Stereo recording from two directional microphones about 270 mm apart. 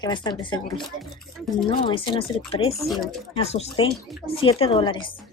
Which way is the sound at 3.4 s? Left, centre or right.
Left.